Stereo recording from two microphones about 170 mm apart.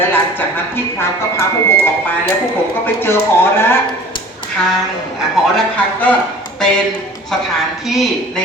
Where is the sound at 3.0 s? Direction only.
15° left (ahead or behind).